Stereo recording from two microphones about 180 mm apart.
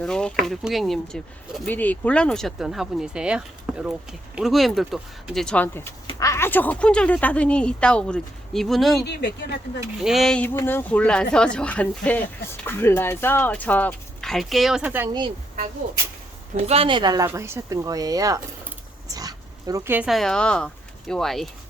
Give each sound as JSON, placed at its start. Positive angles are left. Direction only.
{"t": 0.0, "sound": "speech", "side_deg": 5}
{"t": 9.0, "sound": "speech", "side_deg": 70}
{"t": 10.0, "sound": "speech", "side_deg": 0}
{"t": 16.6, "sound": "speech", "side_deg": -30}
{"t": 17.2, "sound": "speech", "side_deg": -15}